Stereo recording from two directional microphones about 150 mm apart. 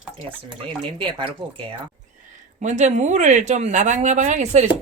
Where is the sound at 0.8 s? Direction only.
35° right (ahead or behind).